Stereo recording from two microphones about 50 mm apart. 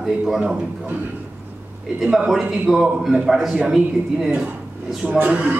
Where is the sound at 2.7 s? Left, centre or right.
Centre.